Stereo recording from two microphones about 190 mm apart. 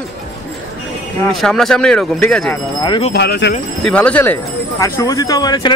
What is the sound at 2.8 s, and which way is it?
Speech, 25° left (ahead or behind).